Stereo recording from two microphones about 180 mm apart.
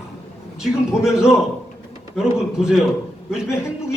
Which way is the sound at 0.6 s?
5° right (ahead or behind).